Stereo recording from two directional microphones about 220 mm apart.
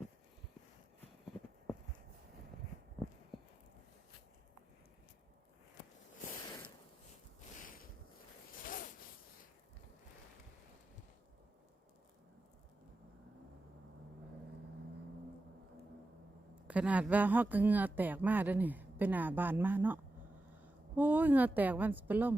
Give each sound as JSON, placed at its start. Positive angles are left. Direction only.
{"t": 8.6, "sound": "zipper", "side_deg": 40}
{"t": 16.6, "sound": "a woman's voice", "side_deg": -5}